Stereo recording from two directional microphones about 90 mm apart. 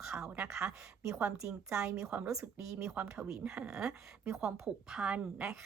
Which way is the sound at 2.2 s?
35° right (ahead or behind).